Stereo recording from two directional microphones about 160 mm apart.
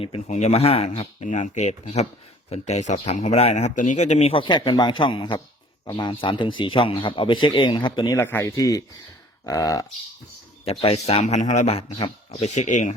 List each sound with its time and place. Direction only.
0.0 s a man's voice: 40° left (ahead or behind)
8.2 s speech: 15° left (ahead or behind)
10.7 s a man's voice: 40° left (ahead or behind)